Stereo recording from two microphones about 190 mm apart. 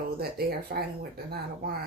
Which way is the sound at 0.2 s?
55° right (ahead or behind).